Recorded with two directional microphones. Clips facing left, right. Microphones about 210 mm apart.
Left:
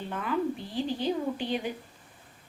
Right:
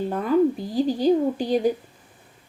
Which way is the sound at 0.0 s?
40° right (ahead or behind).